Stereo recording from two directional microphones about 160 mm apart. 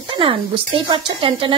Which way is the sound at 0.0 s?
30° right (ahead or behind).